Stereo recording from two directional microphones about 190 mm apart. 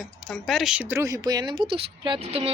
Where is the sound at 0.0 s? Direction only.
Centre (ahead or behind).